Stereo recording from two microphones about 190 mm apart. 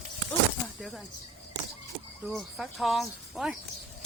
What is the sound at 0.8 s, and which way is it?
Speech, centre (ahead or behind).